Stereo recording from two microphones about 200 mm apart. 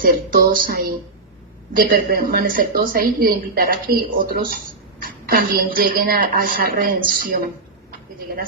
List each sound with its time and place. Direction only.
0.0 s a woman's voice: 45° right (ahead or behind)